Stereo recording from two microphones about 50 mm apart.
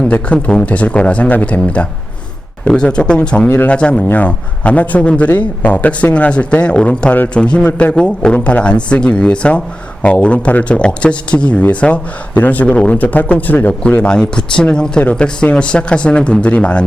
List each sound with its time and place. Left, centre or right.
0.0 s speech: left
14.0 s speech: centre